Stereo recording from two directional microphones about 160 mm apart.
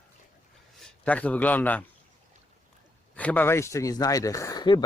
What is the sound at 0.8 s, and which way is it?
A man's voice, 10° left (ahead or behind).